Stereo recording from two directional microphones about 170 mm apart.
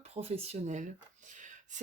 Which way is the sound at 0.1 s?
40° right (ahead or behind).